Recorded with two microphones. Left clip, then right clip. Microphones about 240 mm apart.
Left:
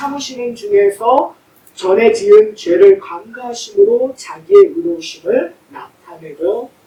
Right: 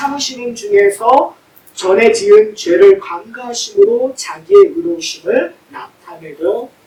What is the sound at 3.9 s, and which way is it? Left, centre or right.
Speech, left.